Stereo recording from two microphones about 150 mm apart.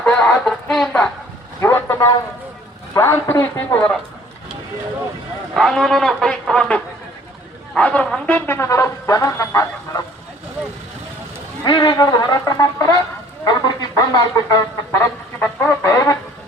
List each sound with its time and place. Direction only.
0.0 s a sound: 5° left (ahead or behind)
1.6 s vehicle: 15° left (ahead or behind)
2.9 s a man's voice: 15° left (ahead or behind)
5.5 s speech: centre (ahead or behind); by 10.0 s 20° left (ahead or behind)
11.6 s speech: 30° left (ahead or behind)